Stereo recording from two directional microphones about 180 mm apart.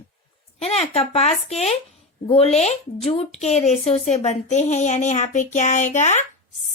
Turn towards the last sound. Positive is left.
turn(degrees=40)  # may be behind; listen again after turning